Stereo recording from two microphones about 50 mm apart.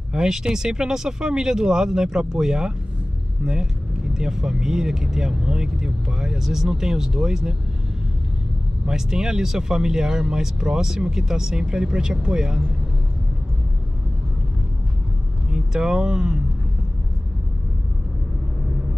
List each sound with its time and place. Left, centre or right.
0.1 s speech: centre
3.4 s speech: right
4.1 s speech: centre
8.8 s speech: centre
15.5 s speech: centre